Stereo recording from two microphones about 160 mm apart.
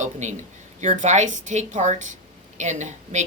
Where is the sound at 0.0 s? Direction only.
45° right (ahead or behind).